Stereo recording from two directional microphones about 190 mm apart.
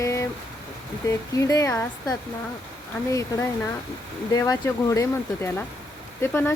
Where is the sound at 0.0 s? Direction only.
15° left (ahead or behind).